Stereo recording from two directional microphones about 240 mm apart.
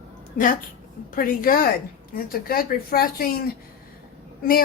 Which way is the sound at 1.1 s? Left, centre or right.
Left.